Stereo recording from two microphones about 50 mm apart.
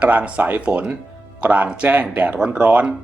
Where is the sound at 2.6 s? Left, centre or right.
Right.